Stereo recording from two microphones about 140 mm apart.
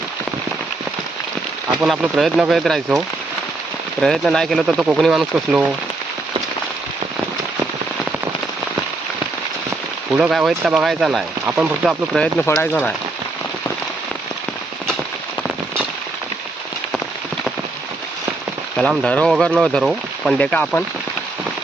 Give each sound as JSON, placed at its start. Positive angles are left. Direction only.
{"t": 1.8, "sound": "speech", "side_deg": -5}
{"t": 4.0, "sound": "speech", "side_deg": 0}
{"t": 10.1, "sound": "speech", "side_deg": -5}
{"t": 12.5, "sound": "speech", "side_deg": 20}
{"t": 18.8, "sound": "speech", "side_deg": 5}
{"t": 20.4, "sound": "speech", "side_deg": 10}